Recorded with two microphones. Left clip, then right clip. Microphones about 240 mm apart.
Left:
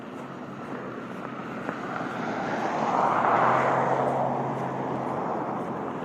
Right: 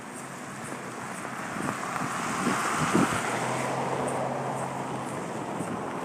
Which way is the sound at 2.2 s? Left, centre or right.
Right.